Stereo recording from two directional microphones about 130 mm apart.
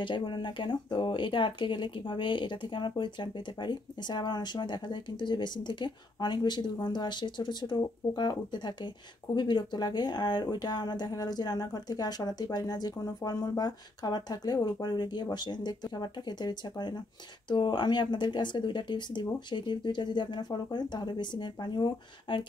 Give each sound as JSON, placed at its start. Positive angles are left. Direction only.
{"t": 0.0, "sound": "speech", "side_deg": 40}